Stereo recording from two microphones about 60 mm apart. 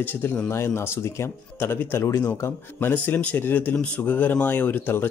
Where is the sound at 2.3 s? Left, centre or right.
Left.